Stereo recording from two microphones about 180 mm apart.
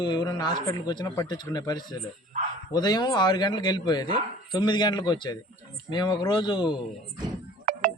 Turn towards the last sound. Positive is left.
turn(degrees=-50)  # may be behind; listen again after turning